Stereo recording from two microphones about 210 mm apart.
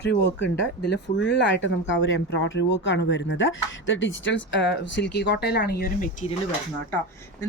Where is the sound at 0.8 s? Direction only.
55° left (ahead or behind); by 6.3 s 40° left (ahead or behind).